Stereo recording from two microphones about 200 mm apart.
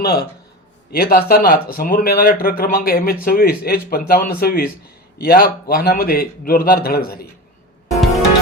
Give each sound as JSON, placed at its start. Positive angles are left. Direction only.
{"t": 0.0, "sound": "speech", "side_deg": 50}